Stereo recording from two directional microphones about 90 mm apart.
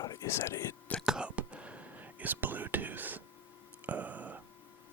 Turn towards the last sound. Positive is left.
turn(degrees=-15)  # may be behind; listen again after turning